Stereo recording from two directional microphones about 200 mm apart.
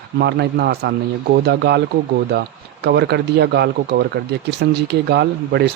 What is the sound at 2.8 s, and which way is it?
Speech, 55° right (ahead or behind).